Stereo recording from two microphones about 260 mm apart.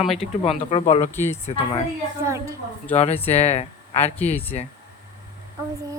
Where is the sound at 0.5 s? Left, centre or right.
Left.